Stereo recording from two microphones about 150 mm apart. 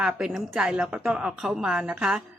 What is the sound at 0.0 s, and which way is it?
Speech, 5° right (ahead or behind).